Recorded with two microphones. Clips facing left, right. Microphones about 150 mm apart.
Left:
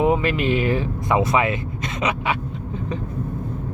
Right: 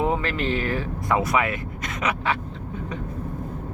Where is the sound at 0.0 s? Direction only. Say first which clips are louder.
Left 5 dB; 15° left (ahead or behind).